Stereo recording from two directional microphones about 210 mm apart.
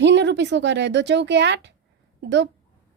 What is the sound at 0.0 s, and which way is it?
Speech, 55° right (ahead or behind).